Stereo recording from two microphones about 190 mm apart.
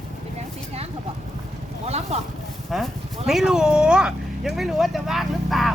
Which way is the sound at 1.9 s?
35° right (ahead or behind).